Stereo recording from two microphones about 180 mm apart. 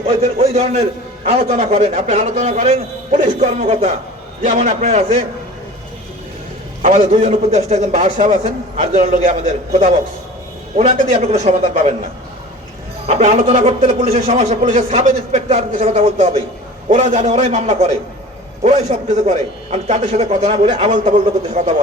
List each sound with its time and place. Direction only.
0.0 s a man's voice: 35° right (ahead or behind)
6.8 s a man's voice: 45° right (ahead or behind)
10.8 s a man's voice: 35° right (ahead or behind)
13.1 s a man's voice: 35° right (ahead or behind)